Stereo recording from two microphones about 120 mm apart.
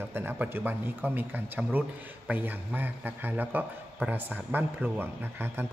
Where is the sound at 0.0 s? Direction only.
20° right (ahead or behind).